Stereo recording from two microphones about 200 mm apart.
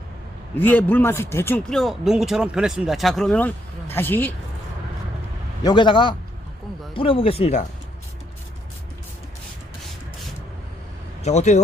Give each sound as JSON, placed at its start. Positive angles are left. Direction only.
{"t": 0.5, "sound": "speech", "side_deg": 10}
{"t": 5.6, "sound": "speech", "side_deg": 25}
{"t": 11.2, "sound": "speech", "side_deg": 35}